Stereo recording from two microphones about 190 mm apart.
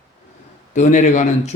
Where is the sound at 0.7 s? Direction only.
40° left (ahead or behind).